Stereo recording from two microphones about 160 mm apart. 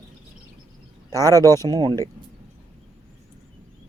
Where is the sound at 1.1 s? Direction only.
20° right (ahead or behind).